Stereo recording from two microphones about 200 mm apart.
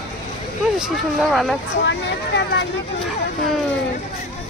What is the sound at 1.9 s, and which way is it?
Speech, 60° left (ahead or behind).